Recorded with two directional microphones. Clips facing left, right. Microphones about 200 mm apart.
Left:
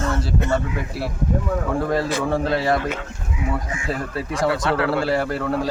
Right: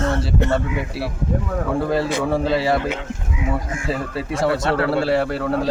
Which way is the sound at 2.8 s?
20° right (ahead or behind).